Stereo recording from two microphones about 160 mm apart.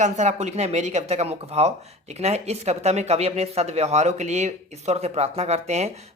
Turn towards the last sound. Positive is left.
turn(degrees=-45)  # may be behind; listen again after turning